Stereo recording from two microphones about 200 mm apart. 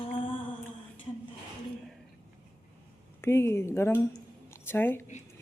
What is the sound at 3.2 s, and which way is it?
A woman's voice, 15° left (ahead or behind).